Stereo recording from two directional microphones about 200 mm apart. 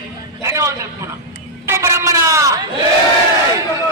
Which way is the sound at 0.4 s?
15° right (ahead or behind).